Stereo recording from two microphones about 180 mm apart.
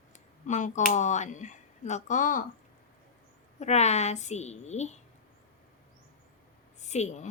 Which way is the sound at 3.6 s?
40° left (ahead or behind).